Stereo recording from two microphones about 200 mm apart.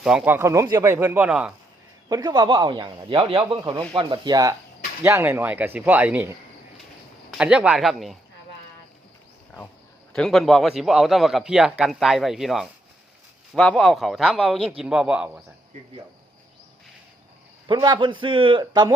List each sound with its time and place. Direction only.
0.0 s speech: 5° right (ahead or behind)
2.0 s a man's voice: 20° right (ahead or behind)
7.3 s a man's voice: 5° right (ahead or behind)
10.1 s a man's voice: 5° left (ahead or behind)
17.7 s a man's voice: 20° right (ahead or behind)